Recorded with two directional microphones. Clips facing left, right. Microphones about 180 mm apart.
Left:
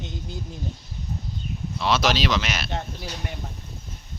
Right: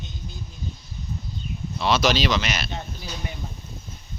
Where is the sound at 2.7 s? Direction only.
70° left (ahead or behind).